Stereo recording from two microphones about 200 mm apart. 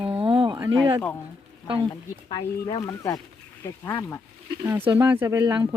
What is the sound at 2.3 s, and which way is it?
Speech, 20° left (ahead or behind).